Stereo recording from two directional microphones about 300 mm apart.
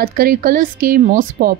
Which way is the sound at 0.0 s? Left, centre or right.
Right.